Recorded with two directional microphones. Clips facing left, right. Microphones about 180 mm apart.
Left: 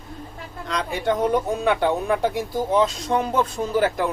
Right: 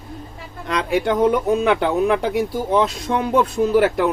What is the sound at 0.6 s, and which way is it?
Speech, 65° right (ahead or behind).